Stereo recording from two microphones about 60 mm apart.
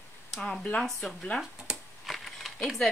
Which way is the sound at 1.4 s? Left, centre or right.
Centre.